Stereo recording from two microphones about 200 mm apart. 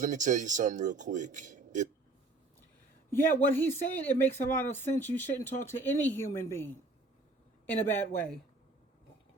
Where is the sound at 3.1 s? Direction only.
10° left (ahead or behind).